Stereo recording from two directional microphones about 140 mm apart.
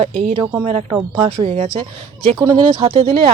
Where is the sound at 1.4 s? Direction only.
50° right (ahead or behind).